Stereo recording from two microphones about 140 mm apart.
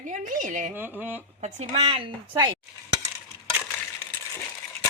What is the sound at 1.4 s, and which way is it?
A woman's voice, 50° right (ahead or behind).